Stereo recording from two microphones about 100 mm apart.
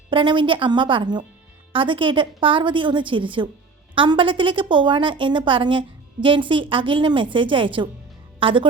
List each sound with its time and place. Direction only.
0.1 s a woman's voice: 55° right (ahead or behind)